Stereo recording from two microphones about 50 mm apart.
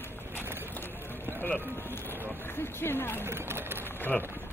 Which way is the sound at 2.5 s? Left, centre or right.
Left.